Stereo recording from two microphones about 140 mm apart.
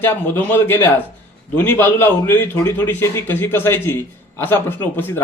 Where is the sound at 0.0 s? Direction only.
15° left (ahead or behind).